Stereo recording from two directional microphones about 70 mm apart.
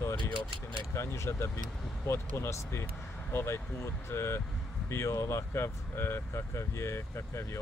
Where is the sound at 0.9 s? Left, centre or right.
Left.